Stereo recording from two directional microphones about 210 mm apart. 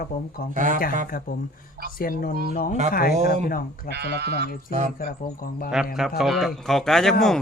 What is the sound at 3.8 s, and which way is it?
Speech, 55° right (ahead or behind).